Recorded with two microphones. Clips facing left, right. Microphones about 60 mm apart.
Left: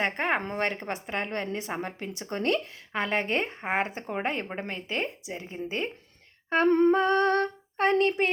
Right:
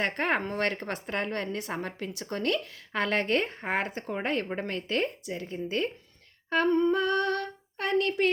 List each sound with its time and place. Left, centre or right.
0.0 s a woman's voice: centre
3.0 s a woman's voice: centre
6.7 s humming: left
6.9 s a sound: left